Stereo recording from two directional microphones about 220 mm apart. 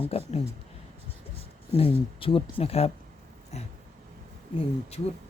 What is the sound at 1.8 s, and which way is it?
Speech, 25° left (ahead or behind).